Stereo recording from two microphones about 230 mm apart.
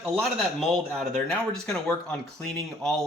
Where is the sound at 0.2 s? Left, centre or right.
Centre.